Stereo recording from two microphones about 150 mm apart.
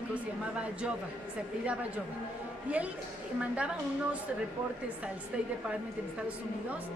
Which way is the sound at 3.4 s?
10° right (ahead or behind).